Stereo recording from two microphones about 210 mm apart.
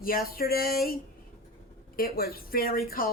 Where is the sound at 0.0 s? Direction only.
45° left (ahead or behind).